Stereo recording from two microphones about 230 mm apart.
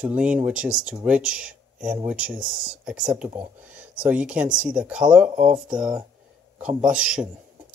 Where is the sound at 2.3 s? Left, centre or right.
Right.